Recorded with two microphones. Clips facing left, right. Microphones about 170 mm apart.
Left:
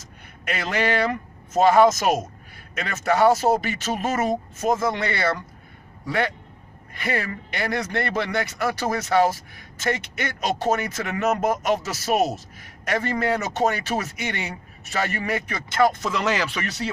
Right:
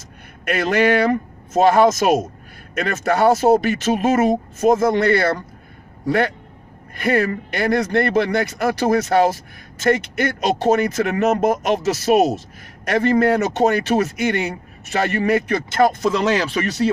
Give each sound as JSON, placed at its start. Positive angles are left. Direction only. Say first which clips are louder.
{"t": 0.5, "sound": "speech", "louder": "right 7 dB", "side_deg": -50}